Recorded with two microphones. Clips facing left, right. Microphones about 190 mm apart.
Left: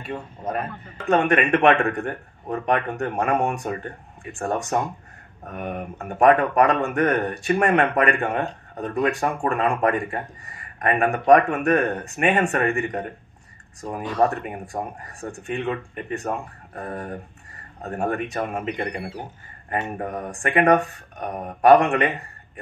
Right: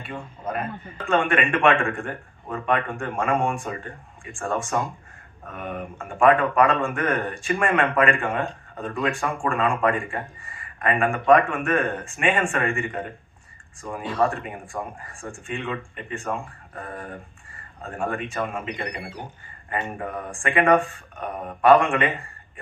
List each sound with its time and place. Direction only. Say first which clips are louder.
0.0 s speech: left 2 dB; 40° left (ahead or behind)